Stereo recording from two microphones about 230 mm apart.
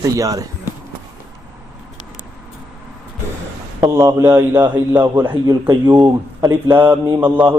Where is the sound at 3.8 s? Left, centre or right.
Centre.